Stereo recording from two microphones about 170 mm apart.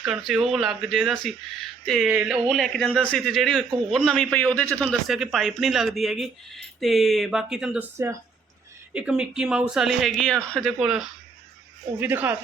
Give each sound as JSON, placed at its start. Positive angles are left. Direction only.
{"t": 0.0, "sound": "a man's voice", "side_deg": 0}
{"t": 8.9, "sound": "a man's voice", "side_deg": -5}